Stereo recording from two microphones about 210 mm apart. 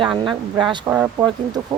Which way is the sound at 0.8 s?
10° right (ahead or behind).